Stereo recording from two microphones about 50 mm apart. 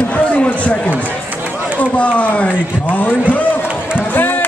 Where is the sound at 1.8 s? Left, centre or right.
Left.